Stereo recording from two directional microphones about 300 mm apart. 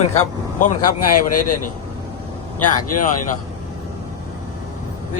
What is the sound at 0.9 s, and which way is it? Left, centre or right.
Speech, left.